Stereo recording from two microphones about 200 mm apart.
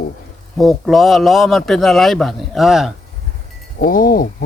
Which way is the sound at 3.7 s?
45° left (ahead or behind).